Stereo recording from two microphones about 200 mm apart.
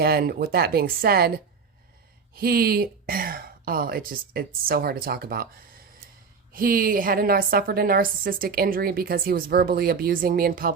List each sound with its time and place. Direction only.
0.0 s a woman's voice: 50° right (ahead or behind)
2.3 s a woman's voice: 50° right (ahead or behind)